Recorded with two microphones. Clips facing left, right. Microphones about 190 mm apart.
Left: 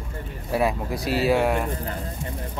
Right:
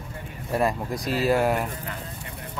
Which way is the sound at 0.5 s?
5° left (ahead or behind).